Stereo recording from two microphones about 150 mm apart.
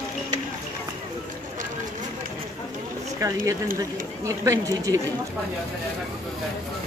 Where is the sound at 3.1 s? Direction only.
20° right (ahead or behind).